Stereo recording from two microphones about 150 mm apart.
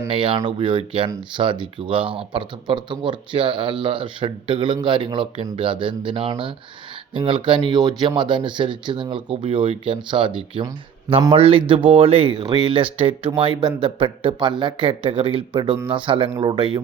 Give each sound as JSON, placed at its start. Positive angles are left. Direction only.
{"t": 0.1, "sound": "speech", "side_deg": -35}